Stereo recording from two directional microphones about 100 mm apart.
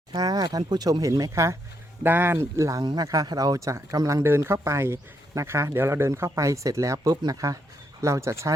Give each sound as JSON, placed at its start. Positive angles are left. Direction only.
{"t": 0.1, "sound": "speech", "side_deg": -40}
{"t": 2.0, "sound": "speech", "side_deg": -20}